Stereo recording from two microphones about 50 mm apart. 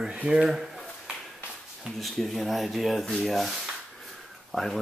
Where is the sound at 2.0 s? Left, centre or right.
Centre.